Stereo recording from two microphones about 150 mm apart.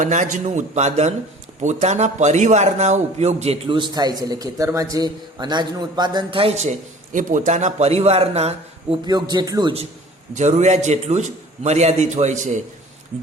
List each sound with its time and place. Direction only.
0.0 s a man's voice: 55° right (ahead or behind)
9.0 s a man's voice: 30° right (ahead or behind)
10.3 s a man's voice: 50° right (ahead or behind)